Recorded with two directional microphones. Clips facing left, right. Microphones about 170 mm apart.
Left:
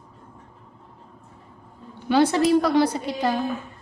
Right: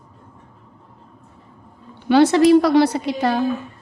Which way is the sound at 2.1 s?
75° right (ahead or behind).